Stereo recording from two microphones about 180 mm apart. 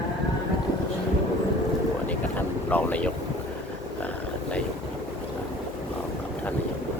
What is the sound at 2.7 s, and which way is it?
Speech, 10° left (ahead or behind).